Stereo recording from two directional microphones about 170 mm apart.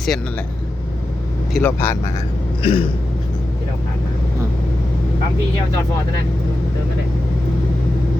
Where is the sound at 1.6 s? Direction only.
15° left (ahead or behind).